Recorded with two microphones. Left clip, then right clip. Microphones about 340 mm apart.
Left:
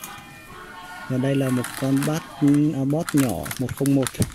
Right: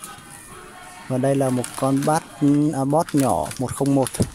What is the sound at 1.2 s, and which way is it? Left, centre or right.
Speech, right.